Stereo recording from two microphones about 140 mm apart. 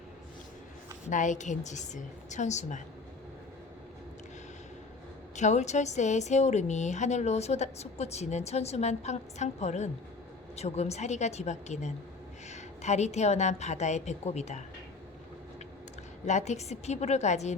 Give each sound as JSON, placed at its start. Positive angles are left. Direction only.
{"t": 1.1, "sound": "a woman's voice", "side_deg": 65}
{"t": 5.4, "sound": "a woman's voice", "side_deg": 55}
{"t": 16.2, "sound": "a woman's voice", "side_deg": 55}